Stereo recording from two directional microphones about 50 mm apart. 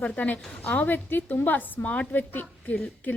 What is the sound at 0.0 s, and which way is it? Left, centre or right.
Speech, left.